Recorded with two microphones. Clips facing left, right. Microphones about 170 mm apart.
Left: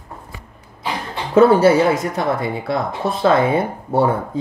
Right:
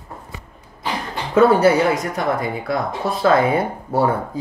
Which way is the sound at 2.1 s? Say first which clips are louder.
Left 1 dB; 25° left (ahead or behind).